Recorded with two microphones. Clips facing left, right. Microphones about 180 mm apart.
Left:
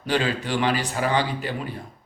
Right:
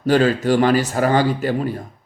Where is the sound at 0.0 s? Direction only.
45° right (ahead or behind).